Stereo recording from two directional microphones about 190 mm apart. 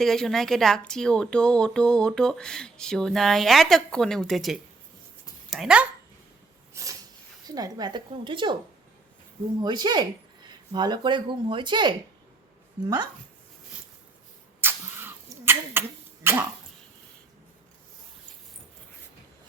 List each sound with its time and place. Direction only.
0.0 s speech: centre (ahead or behind)
6.8 s a sound: 15° right (ahead or behind)
7.4 s speech: 20° right (ahead or behind)
9.6 s speech: 25° right (ahead or behind)
14.6 s a sound: 10° right (ahead or behind)
16.2 s dog: 10° right (ahead or behind)